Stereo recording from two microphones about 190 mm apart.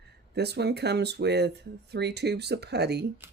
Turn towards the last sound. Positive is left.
turn(degrees=-60)  # may be behind; listen again after turning